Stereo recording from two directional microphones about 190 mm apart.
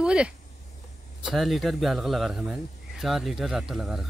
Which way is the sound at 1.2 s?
Centre (ahead or behind).